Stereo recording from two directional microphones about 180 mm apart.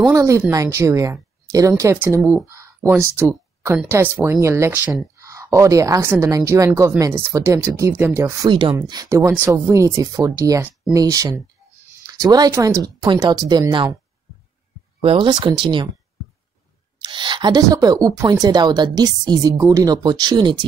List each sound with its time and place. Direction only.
0.1 s speech: 15° right (ahead or behind)
2.4 s a sound: 15° right (ahead or behind)
3.2 s speech: 15° right (ahead or behind)
15.0 s speech: 30° right (ahead or behind)
17.0 s speech: 25° right (ahead or behind)